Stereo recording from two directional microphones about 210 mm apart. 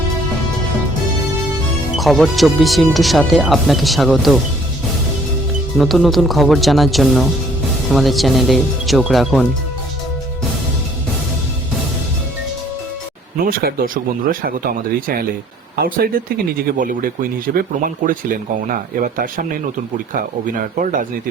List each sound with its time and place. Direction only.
2.0 s speech: centre (ahead or behind)
5.7 s speech: centre (ahead or behind)
13.4 s speech: 45° right (ahead or behind)